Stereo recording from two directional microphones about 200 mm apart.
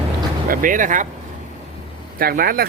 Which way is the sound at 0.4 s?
45° right (ahead or behind).